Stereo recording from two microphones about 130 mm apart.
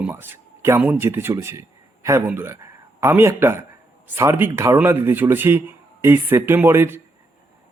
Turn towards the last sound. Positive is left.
turn(degrees=-15)  # may be behind; listen again after turning